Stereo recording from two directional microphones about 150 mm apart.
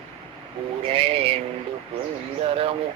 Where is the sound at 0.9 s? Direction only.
40° right (ahead or behind).